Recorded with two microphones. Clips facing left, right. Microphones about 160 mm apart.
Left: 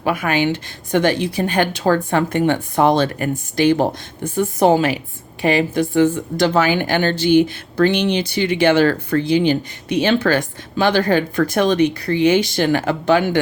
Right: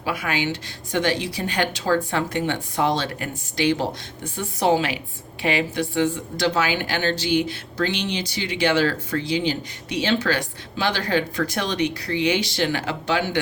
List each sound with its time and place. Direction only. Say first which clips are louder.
0.0 s speech: left 7 dB; 55° left (ahead or behind)